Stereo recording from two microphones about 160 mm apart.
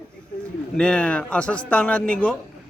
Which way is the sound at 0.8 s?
5° left (ahead or behind).